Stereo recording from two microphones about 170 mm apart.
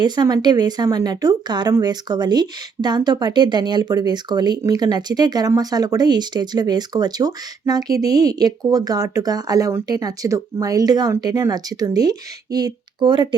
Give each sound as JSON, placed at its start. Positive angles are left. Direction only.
{"t": 0.0, "sound": "speech", "side_deg": -25}